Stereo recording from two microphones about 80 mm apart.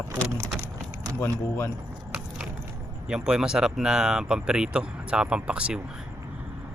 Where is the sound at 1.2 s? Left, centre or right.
Left.